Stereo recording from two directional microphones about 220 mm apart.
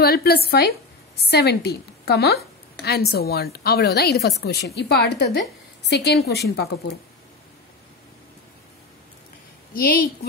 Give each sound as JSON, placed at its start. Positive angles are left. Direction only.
{"t": 0.0, "sound": "a woman's voice", "side_deg": 45}
{"t": 9.8, "sound": "a woman's voice", "side_deg": 40}